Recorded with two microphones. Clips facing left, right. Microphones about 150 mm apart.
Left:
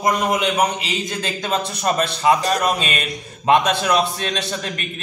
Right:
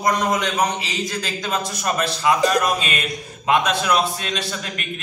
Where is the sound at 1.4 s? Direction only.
30° left (ahead or behind).